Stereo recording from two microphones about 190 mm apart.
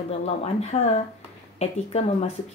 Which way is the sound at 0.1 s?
30° left (ahead or behind).